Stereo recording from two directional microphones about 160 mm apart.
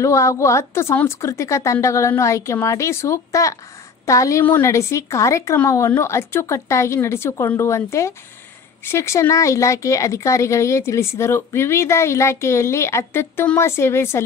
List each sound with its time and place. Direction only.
0.0 s speech: 20° left (ahead or behind)